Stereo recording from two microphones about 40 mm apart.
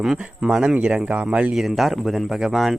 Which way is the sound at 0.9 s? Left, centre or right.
Right.